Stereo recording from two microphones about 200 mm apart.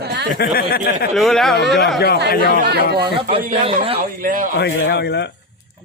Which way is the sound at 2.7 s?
55° right (ahead or behind).